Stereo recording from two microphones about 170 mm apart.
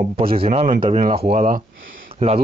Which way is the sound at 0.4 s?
35° right (ahead or behind).